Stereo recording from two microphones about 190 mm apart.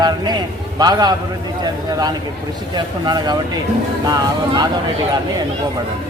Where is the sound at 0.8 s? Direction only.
20° right (ahead or behind).